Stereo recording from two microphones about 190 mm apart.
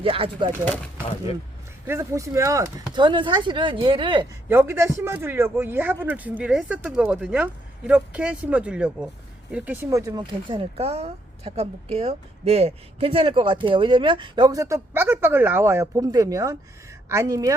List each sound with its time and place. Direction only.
0.0 s speech: 30° right (ahead or behind)
1.9 s speech: 15° right (ahead or behind)
4.4 s speech: 10° right (ahead or behind)